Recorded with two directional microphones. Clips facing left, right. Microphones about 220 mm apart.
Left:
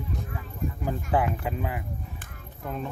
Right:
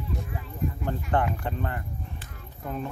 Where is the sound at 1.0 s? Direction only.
5° left (ahead or behind).